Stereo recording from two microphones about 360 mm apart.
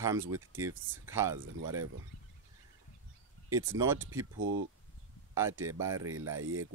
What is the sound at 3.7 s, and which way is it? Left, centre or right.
Speech, centre.